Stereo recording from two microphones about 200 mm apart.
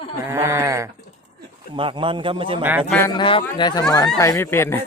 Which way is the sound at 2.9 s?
10° left (ahead or behind).